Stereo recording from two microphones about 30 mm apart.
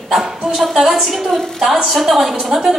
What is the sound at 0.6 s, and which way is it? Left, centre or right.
A woman's voice, centre.